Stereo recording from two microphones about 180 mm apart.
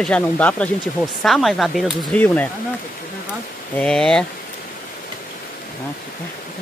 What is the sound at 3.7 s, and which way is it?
Speech, 5° left (ahead or behind).